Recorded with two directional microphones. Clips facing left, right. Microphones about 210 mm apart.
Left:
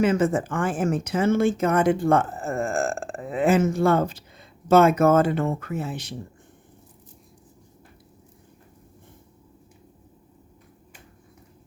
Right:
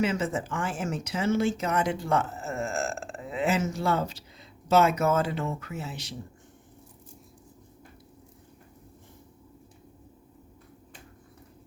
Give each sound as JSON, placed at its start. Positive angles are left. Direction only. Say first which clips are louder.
{"t": 0.0, "sound": "speech", "louder": "left 7 dB", "side_deg": 50}